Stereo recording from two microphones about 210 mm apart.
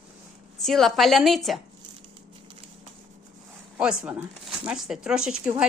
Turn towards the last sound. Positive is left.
turn(degrees=-5)  # may be behind; listen again after turning